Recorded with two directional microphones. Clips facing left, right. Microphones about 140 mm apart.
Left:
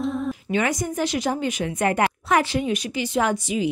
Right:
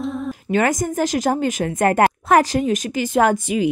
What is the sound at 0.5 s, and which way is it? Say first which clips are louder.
Speech: right 6 dB; 45° right (ahead or behind).